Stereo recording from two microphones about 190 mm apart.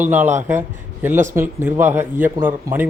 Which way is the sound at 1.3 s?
10° right (ahead or behind).